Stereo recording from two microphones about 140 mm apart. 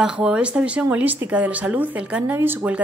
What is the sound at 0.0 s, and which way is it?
Speech, 10° right (ahead or behind).